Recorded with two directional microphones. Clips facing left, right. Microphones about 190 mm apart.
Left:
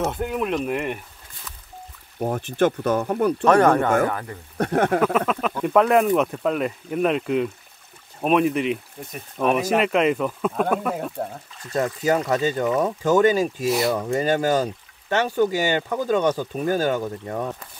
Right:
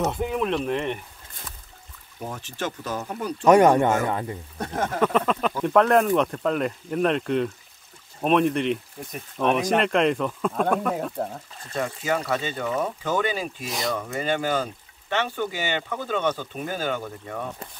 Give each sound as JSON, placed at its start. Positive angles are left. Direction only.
{"t": 0.0, "sound": "speech", "side_deg": 0}
{"t": 2.1, "sound": "speech", "side_deg": 55}
{"t": 3.4, "sound": "speech", "side_deg": -15}
{"t": 4.6, "sound": "speech", "side_deg": 65}
{"t": 5.0, "sound": "speech", "side_deg": 5}
{"t": 11.7, "sound": "speech", "side_deg": 40}
{"t": 13.7, "sound": "speech", "side_deg": 5}
{"t": 13.9, "sound": "speech", "side_deg": 35}